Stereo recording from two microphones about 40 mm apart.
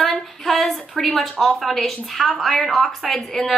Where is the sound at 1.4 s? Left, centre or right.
Centre.